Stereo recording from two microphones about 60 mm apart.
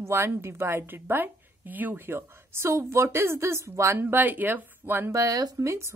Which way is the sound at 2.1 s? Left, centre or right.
Right.